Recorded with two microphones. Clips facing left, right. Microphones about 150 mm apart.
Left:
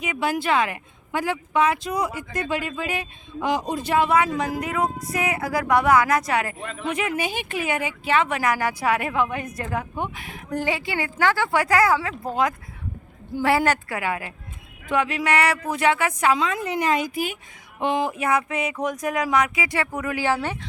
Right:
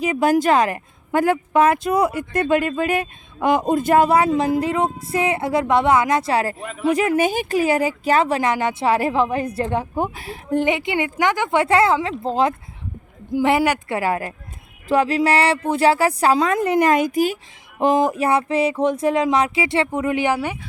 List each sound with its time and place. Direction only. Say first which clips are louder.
0.0 s speech: right 8 dB; 40° right (ahead or behind)
6.6 s speech: right 2 dB; 10° right (ahead or behind)
6.8 s speech: right 9 dB; 35° right (ahead or behind)
13.3 s a sound: right 3 dB; 20° right (ahead or behind)
14.1 s speech: right 6 dB; 40° right (ahead or behind)
16.5 s a woman's voice: right 7 dB; 50° right (ahead or behind)
17.7 s a sound: right 6 dB; 40° right (ahead or behind); by 20.6 s 15° right (ahead or behind)